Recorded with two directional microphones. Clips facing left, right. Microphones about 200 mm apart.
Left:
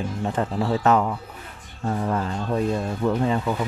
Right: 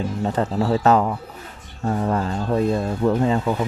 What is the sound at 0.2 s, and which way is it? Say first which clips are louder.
Speech: right 3 dB; 35° right (ahead or behind).